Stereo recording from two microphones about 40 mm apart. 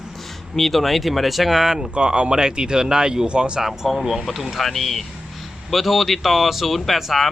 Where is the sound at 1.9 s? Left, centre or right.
Right.